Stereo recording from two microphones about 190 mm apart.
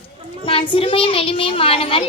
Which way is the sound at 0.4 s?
30° left (ahead or behind).